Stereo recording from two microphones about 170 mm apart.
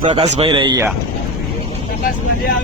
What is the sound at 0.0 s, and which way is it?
Speech, 30° right (ahead or behind).